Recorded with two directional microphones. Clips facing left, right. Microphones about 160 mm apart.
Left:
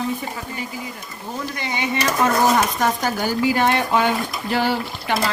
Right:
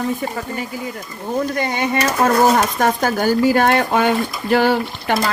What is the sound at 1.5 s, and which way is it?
Speech, 50° right (ahead or behind).